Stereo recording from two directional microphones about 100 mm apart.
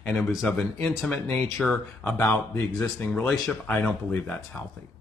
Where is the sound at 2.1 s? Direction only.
20° left (ahead or behind).